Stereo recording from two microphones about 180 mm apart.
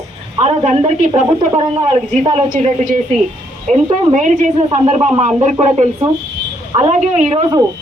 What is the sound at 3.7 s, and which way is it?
A man's voice, 40° right (ahead or behind).